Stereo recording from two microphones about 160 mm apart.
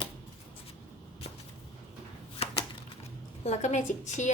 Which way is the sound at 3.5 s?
50° left (ahead or behind).